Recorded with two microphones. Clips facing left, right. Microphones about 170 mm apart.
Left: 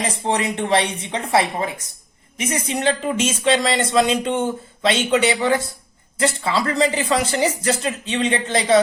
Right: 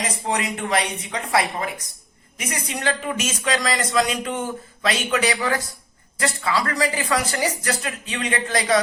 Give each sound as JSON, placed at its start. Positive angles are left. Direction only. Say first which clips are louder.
{"t": 0.0, "sound": "speech", "louder": "left 3 dB", "side_deg": 30}